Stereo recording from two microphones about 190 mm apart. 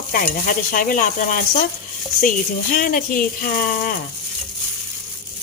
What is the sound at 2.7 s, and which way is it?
Stir, 45° left (ahead or behind).